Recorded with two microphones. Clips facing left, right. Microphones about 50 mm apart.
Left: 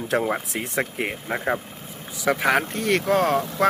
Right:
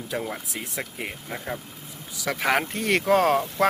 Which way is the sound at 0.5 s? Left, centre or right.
Left.